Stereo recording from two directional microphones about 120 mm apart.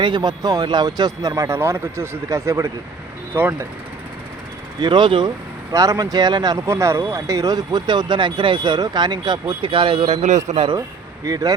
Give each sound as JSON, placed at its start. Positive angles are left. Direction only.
{"t": 0.0, "sound": "speech", "side_deg": -40}
{"t": 4.8, "sound": "speech", "side_deg": -40}
{"t": 5.7, "sound": "speech", "side_deg": -30}
{"t": 10.1, "sound": "a man's voice", "side_deg": -75}
{"t": 11.3, "sound": "speech", "side_deg": -30}